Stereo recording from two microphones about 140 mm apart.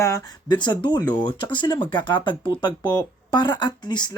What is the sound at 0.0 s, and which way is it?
A man's voice, 30° left (ahead or behind).